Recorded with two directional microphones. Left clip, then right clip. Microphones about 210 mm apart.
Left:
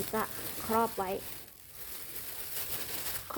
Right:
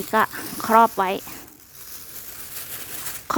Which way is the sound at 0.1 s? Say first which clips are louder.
Right 17 dB; 50° right (ahead or behind).